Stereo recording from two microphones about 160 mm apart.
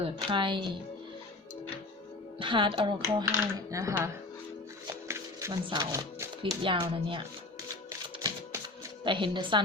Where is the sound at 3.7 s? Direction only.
20° right (ahead or behind).